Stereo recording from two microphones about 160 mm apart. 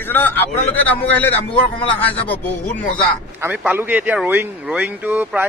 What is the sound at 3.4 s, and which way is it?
Speech, 10° right (ahead or behind).